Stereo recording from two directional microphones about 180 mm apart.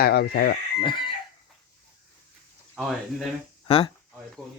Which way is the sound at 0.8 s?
25° left (ahead or behind).